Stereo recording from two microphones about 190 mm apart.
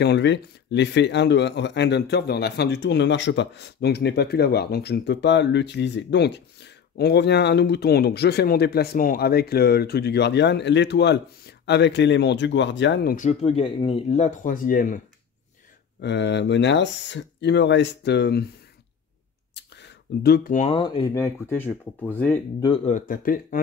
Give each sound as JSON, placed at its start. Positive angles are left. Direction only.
{"t": 0.0, "sound": "speech", "side_deg": 65}
{"t": 13.1, "sound": "speech", "side_deg": 40}
{"t": 16.0, "sound": "speech", "side_deg": 65}
{"t": 19.5, "sound": "a sound", "side_deg": 65}
{"t": 20.5, "sound": "speech", "side_deg": 30}
{"t": 22.8, "sound": "speech", "side_deg": 45}